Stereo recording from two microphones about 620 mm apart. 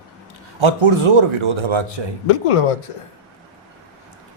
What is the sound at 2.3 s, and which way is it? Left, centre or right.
Speech, left.